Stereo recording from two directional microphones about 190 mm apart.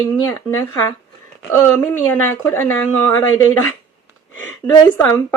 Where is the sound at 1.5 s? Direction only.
10° left (ahead or behind).